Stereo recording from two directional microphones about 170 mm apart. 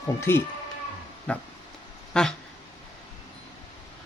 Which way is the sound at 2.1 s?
5° left (ahead or behind).